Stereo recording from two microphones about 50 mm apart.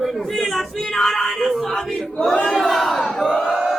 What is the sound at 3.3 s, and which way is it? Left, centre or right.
Crowd, centre.